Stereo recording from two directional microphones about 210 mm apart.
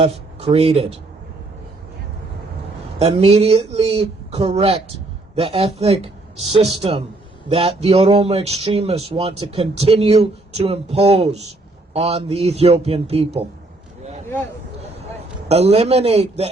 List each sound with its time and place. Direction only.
0.0 s speech: 25° right (ahead or behind)
3.0 s speech: 30° right (ahead or behind)
15.4 s speech: 30° right (ahead or behind)